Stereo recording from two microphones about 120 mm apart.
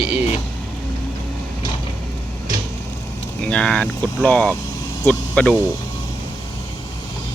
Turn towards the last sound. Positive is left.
turn(degrees=10)  # may be behind; listen again after turning